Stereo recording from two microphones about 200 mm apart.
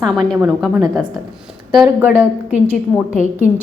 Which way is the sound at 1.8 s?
10° right (ahead or behind).